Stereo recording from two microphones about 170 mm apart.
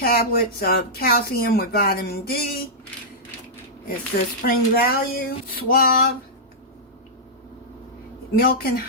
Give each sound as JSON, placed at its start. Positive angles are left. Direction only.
{"t": 0.0, "sound": "speech", "side_deg": 65}
{"t": 4.4, "sound": "speech", "side_deg": 60}
{"t": 8.4, "sound": "speech", "side_deg": 60}